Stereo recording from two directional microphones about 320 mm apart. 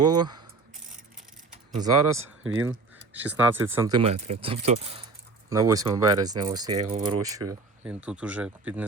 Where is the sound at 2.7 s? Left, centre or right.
Centre.